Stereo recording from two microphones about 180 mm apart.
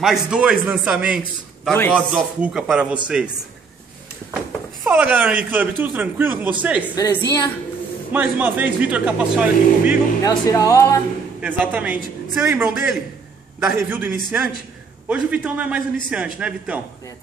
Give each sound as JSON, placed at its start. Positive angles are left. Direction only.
{"t": 0.0, "sound": "a man's voice", "side_deg": -5}
{"t": 1.7, "sound": "a man's voice", "side_deg": 5}
{"t": 4.8, "sound": "speech", "side_deg": -10}
{"t": 7.0, "sound": "a woman's voice", "side_deg": 20}
{"t": 8.1, "sound": "speech", "side_deg": -10}
{"t": 10.2, "sound": "speech", "side_deg": 15}
{"t": 11.4, "sound": "speech", "side_deg": -10}